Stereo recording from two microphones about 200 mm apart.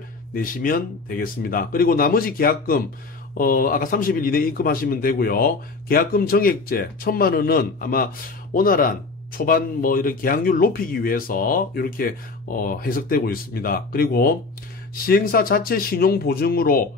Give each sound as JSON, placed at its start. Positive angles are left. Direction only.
{"t": 0.3, "sound": "speech", "side_deg": 45}